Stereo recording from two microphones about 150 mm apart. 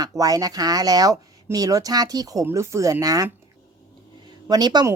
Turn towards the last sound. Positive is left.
turn(degrees=-25)  # may be behind; listen again after turning